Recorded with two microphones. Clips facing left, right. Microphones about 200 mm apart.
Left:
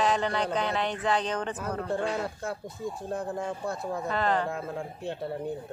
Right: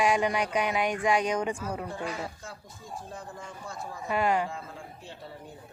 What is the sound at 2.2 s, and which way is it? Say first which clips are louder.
Speech: left 7 dB; 60° left (ahead or behind).